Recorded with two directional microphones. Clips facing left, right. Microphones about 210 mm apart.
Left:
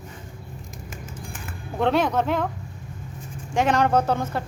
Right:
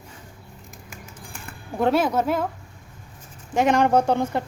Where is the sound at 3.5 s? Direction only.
10° right (ahead or behind).